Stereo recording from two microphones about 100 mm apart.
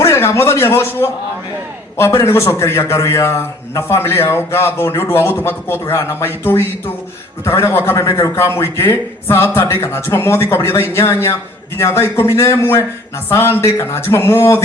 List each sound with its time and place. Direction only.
0.0 s a man's voice: 25° left (ahead or behind)